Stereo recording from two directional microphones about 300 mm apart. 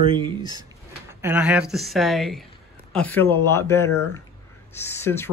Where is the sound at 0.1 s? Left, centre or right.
Centre.